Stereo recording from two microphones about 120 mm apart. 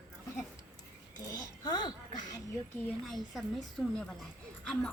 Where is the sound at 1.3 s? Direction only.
35° left (ahead or behind).